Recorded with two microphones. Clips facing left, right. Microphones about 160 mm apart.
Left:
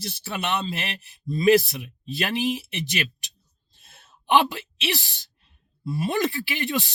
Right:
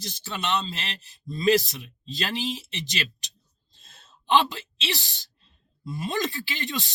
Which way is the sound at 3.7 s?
60° left (ahead or behind).